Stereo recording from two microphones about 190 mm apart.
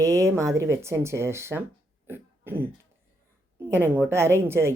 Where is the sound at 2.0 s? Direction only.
10° right (ahead or behind).